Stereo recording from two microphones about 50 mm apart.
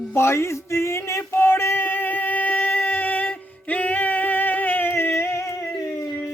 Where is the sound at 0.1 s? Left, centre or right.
Left.